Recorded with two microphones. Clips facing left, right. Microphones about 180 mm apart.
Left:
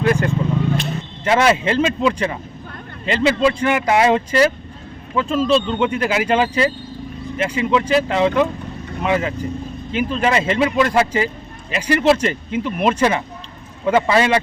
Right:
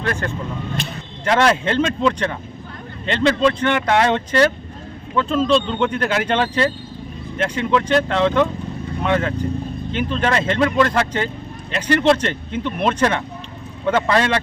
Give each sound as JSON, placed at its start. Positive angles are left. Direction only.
{"t": 0.0, "sound": "speech", "side_deg": 10}